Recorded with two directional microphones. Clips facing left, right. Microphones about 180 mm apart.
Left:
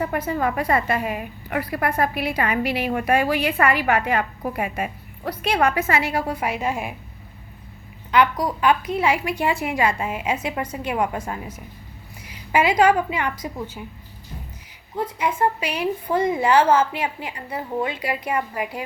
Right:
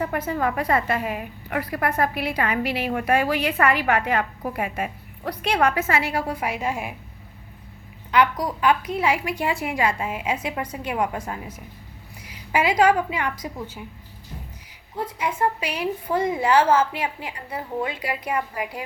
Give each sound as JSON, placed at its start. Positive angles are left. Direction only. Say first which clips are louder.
{"t": 0.0, "sound": "a woman's voice", "louder": "left 1 dB", "side_deg": 10}
{"t": 8.1, "sound": "a woman's voice", "louder": "left 1 dB", "side_deg": 25}